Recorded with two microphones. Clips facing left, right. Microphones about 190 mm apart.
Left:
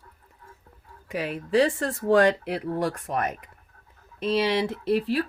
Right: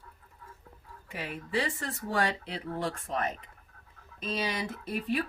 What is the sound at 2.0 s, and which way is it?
Speech, 70° left (ahead or behind).